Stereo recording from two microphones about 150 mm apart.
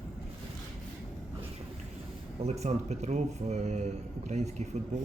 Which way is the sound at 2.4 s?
45° right (ahead or behind).